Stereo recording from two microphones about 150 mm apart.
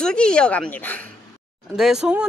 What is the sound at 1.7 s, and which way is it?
Speech, centre (ahead or behind).